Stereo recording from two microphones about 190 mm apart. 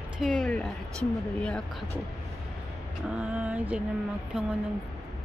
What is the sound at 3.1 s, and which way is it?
Speech, 5° right (ahead or behind).